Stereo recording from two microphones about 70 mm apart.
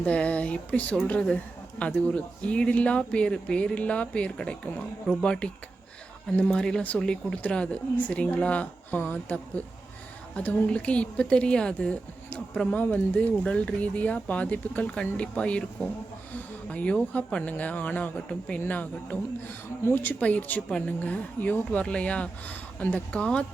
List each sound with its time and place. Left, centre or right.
0.0 s a woman's voice: centre